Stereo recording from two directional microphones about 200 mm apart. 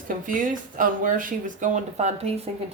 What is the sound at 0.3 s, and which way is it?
Speech, 40° right (ahead or behind).